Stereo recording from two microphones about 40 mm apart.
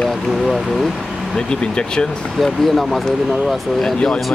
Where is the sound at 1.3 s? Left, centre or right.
Left.